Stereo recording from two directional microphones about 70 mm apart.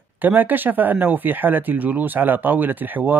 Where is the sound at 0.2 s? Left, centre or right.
Right.